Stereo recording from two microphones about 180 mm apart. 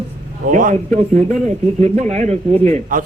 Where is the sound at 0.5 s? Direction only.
45° right (ahead or behind).